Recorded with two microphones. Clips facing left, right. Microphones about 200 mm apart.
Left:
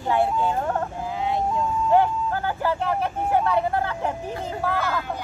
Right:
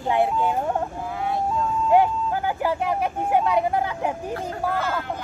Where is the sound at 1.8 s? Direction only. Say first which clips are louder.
Right 1 dB; 15° right (ahead or behind).